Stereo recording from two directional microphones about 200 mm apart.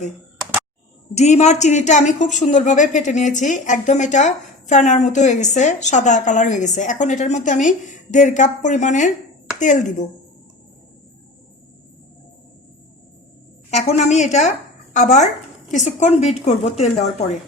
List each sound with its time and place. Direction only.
1.1 s a woman's voice: 35° left (ahead or behind)
13.7 s a woman's voice: 35° left (ahead or behind)